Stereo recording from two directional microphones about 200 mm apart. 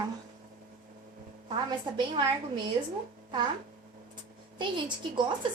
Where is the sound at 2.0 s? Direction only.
20° right (ahead or behind).